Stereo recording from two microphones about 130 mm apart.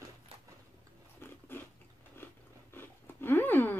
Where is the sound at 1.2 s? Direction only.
15° left (ahead or behind).